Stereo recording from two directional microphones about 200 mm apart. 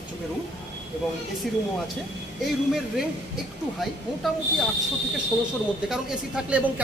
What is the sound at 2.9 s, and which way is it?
A woman's voice, centre (ahead or behind).